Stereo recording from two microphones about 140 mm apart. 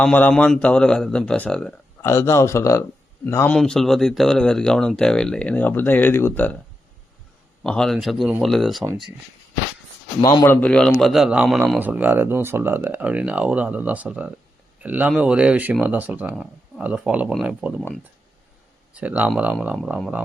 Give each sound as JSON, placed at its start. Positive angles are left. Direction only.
{"t": 0.0, "sound": "speech", "side_deg": 10}
{"t": 2.0, "sound": "speech", "side_deg": 20}
{"t": 7.6, "sound": "speech", "side_deg": 5}
{"t": 10.2, "sound": "a man's voice", "side_deg": 35}
{"t": 10.4, "sound": "speech", "side_deg": 15}
{"t": 11.8, "sound": "speech", "side_deg": -10}
{"t": 18.9, "sound": "speech", "side_deg": -10}